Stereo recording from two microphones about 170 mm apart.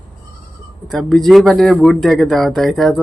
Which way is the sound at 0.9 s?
Centre (ahead or behind).